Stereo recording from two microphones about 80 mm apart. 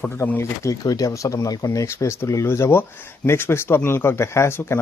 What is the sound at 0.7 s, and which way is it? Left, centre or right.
Speech, left.